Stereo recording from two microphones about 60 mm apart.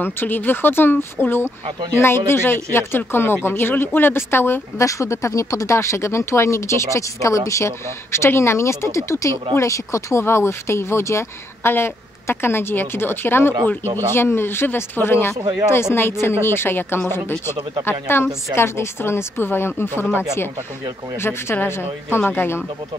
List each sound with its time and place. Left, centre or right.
0.0 s speech: left
4.7 s speech: left
10.2 s speech: left
21.2 s speech: left